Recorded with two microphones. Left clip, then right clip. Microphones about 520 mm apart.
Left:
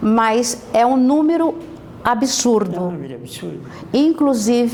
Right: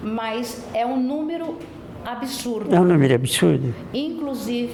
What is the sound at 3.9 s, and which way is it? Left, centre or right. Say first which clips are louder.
Speech: left 13 dB; left.